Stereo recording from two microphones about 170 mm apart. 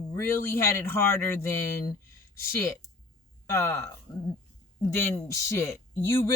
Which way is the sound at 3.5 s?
15° left (ahead or behind).